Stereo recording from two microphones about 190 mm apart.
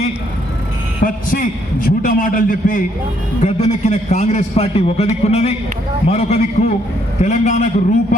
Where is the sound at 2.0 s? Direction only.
45° left (ahead or behind).